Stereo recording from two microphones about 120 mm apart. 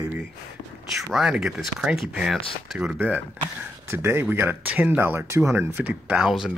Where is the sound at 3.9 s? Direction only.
20° right (ahead or behind).